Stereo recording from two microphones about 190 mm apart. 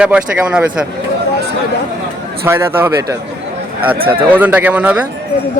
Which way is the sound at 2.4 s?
15° right (ahead or behind).